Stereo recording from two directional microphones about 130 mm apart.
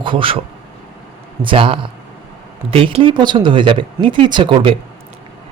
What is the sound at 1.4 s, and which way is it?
A man's voice, 40° right (ahead or behind).